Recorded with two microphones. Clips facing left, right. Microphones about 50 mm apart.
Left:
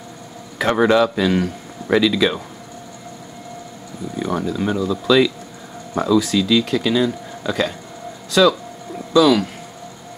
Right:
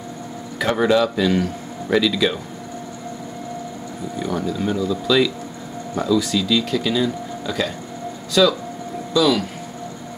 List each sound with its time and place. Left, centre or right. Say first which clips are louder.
0.6 s speech: left 2 dB; centre
4.2 s speech: left 2 dB; centre